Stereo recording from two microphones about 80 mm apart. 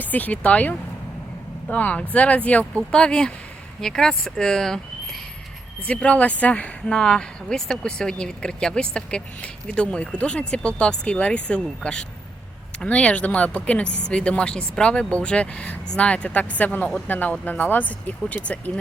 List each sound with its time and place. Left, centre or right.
0.0 s speech: left
5.8 s speech: centre